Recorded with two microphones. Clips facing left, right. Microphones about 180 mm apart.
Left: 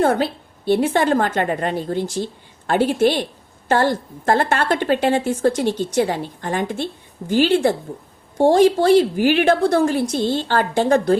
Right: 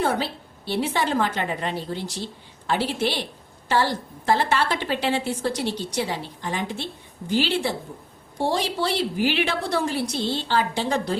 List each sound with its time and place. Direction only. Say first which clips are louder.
0.0 s a woman's voice: left 7 dB; 50° left (ahead or behind)